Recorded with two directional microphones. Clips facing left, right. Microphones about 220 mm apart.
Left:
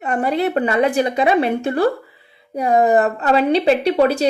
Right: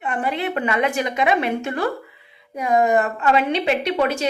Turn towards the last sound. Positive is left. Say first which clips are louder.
# left 5 dB
turn(degrees=35)  # may be behind; listen again after turning